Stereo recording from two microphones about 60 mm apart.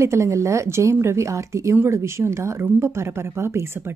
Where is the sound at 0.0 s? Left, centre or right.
Right.